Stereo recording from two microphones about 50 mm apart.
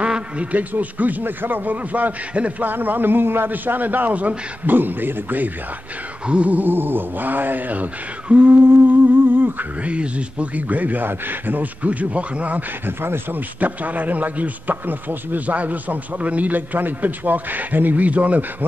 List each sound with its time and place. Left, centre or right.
0.0 s a man's voice: right
6.2 s a sound: right
6.5 s a man's voice: right
12.8 s speech: right
13.6 s a man's voice: right